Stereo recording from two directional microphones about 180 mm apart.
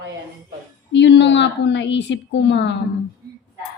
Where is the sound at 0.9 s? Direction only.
80° left.